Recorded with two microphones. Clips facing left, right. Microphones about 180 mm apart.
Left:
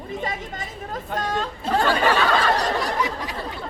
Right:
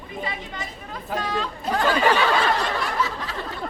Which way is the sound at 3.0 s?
15° left (ahead or behind).